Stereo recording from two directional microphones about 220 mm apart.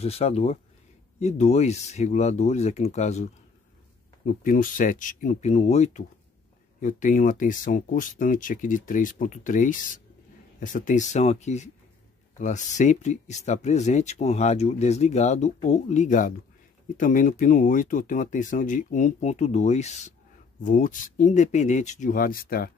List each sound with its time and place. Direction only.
0.0 s speech: 30° left (ahead or behind)
4.3 s speech: 40° left (ahead or behind)